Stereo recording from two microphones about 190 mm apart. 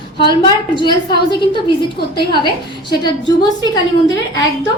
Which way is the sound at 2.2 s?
25° left (ahead or behind).